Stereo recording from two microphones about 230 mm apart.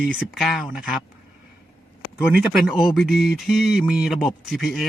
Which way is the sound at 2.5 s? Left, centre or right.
Centre.